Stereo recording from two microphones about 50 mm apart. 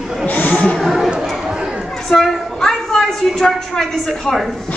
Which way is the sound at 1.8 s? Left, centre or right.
Centre.